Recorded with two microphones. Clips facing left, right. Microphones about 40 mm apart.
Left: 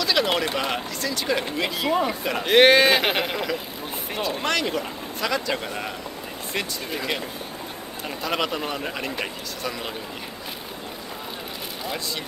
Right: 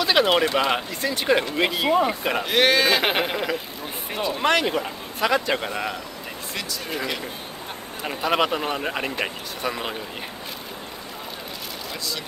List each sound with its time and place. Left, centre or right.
0.0 s a sound: right
0.6 s speech: right
1.9 s speech: centre
2.4 s speech: left
3.0 s speech: centre
4.3 s speech: right
8.1 s speech: right